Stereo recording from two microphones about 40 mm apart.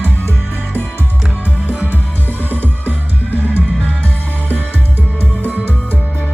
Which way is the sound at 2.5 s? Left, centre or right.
Right.